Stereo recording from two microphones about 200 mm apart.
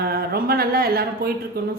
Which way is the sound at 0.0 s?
50° right (ahead or behind).